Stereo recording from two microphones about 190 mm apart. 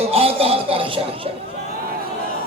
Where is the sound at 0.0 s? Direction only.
30° right (ahead or behind).